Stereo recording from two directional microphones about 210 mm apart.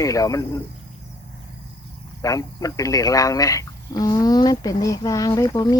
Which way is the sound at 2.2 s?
15° left (ahead or behind).